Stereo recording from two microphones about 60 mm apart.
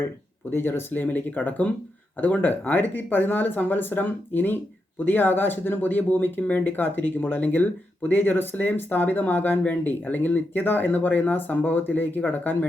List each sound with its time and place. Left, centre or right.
0.5 s speech: left